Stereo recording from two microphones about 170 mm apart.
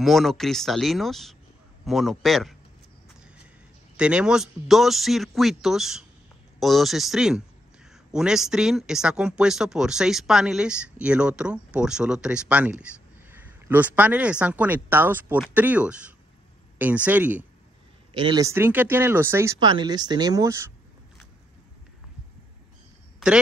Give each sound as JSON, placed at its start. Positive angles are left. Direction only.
{"t": 0.0, "sound": "speech", "side_deg": 0}
{"t": 3.9, "sound": "speech", "side_deg": -5}
{"t": 18.1, "sound": "speech", "side_deg": -25}